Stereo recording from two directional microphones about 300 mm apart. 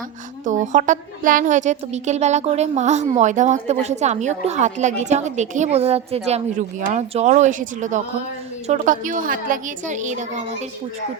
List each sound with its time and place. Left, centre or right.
0.6 s a woman's voice: right